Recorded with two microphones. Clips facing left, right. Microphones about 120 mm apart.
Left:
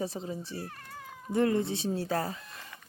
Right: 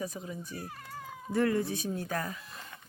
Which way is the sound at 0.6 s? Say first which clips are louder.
Even; 10° right (ahead or behind).